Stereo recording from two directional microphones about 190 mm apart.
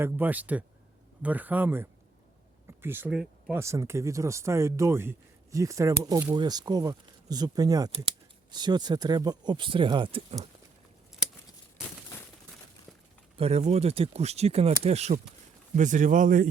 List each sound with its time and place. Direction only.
0.0 s speech: 10° right (ahead or behind); by 10.5 s 30° right (ahead or behind)
13.3 s speech: 35° right (ahead or behind)